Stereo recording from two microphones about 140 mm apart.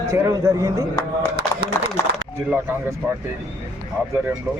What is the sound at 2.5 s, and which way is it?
Speech, 10° right (ahead or behind).